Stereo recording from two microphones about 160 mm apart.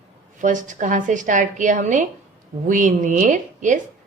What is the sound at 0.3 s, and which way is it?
A woman's voice, 50° right (ahead or behind).